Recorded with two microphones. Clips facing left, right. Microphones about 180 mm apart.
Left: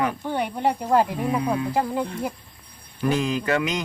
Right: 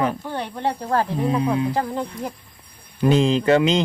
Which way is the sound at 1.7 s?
5° left (ahead or behind).